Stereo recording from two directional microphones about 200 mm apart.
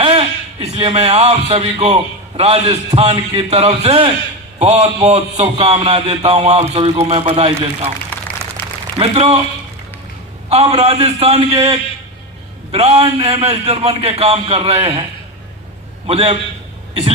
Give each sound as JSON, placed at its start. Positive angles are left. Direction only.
{"t": 0.0, "sound": "speech", "side_deg": -30}
{"t": 8.1, "sound": "a sound", "side_deg": 5}
{"t": 9.0, "sound": "a man's voice", "side_deg": -30}
{"t": 10.5, "sound": "speech", "side_deg": -30}
{"t": 16.0, "sound": "speech", "side_deg": -30}
{"t": 16.9, "sound": "throat clearing", "side_deg": -30}